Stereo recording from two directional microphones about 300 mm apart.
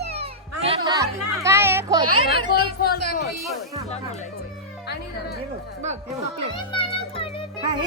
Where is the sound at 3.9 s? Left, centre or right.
Left.